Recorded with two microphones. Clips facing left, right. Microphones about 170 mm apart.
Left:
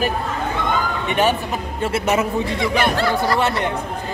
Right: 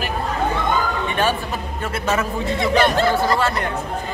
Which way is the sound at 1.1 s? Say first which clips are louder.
Left 5 dB; 15° left (ahead or behind).